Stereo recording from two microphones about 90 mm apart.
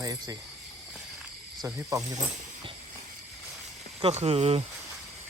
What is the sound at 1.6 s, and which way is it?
Speech, 40° right (ahead or behind).